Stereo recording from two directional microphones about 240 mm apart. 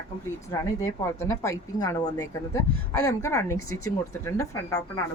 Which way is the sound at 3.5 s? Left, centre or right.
Left.